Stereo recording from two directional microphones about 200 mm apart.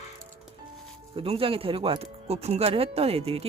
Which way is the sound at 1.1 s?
25° right (ahead or behind).